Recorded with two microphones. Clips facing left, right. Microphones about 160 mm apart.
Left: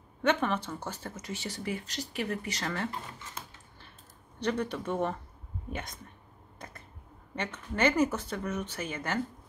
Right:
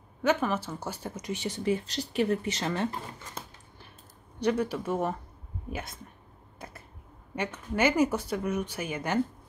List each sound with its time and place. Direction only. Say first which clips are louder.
0.2 s speech: right 1 dB; 5° right (ahead or behind); by 2.9 s 20° right (ahead or behind)
4.4 s speech: right 4 dB; 10° right (ahead or behind)
7.3 s speech: right 3 dB; 10° right (ahead or behind)